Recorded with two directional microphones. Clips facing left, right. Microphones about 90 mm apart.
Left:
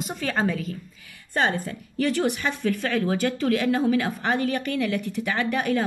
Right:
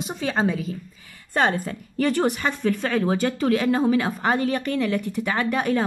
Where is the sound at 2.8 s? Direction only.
30° right (ahead or behind).